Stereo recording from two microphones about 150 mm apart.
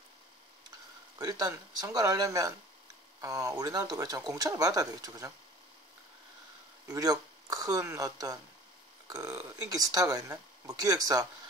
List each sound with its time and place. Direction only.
0.7 s speech: 25° right (ahead or behind)
6.9 s speech: 25° right (ahead or behind)